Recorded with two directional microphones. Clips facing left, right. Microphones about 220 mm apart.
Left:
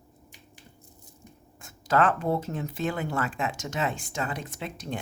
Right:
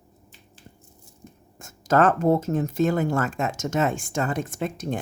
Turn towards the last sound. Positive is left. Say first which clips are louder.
# right 7 dB
turn(degrees=-45)  # may be behind; listen again after turning